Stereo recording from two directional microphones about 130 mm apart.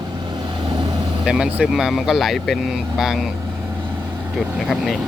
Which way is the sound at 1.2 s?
5° right (ahead or behind).